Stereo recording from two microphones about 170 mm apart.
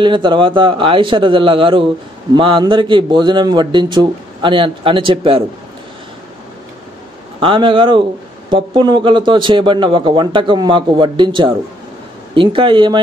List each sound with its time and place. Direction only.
0.0 s a man's voice: 30° right (ahead or behind)
7.3 s a man's voice: 30° right (ahead or behind)